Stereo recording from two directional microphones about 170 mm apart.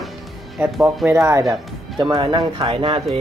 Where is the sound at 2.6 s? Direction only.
35° right (ahead or behind).